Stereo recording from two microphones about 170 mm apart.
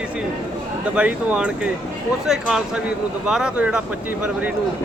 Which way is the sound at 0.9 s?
5° right (ahead or behind).